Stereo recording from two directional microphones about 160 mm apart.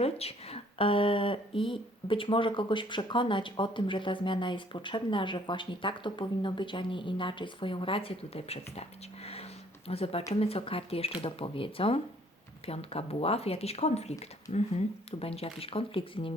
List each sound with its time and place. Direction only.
0.0 s speech: 40° left (ahead or behind)